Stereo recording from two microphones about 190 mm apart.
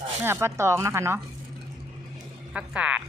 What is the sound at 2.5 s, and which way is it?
Speech, 5° right (ahead or behind).